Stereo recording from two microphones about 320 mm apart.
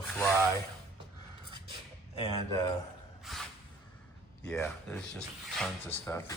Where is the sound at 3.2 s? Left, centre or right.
Centre.